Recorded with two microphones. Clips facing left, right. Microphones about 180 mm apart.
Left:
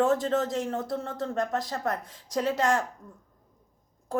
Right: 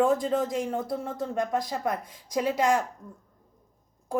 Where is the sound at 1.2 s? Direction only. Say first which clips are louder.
Right 1 dB; 10° right (ahead or behind).